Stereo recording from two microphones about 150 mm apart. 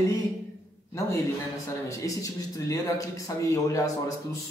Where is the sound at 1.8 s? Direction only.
20° left (ahead or behind).